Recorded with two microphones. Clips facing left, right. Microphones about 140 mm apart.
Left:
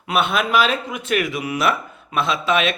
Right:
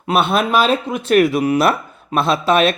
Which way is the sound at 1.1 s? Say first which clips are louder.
Right 9 dB; 40° right (ahead or behind).